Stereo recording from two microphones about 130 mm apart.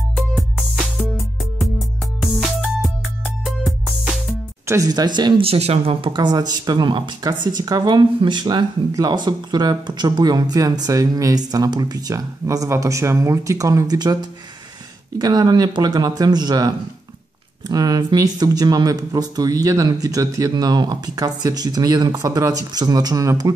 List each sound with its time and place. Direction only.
0.3 s music: 5° right (ahead or behind)
4.6 s speech: 25° right (ahead or behind)
5.4 s speech: 50° right (ahead or behind); by 14.1 s 30° right (ahead or behind)
15.1 s speech: 30° right (ahead or behind)